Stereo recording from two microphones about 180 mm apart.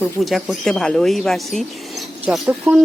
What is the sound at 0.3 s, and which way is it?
A woman's voice, centre (ahead or behind).